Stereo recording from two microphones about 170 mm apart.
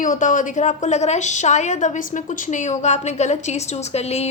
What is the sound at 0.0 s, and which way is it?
A woman's voice, 50° left (ahead or behind).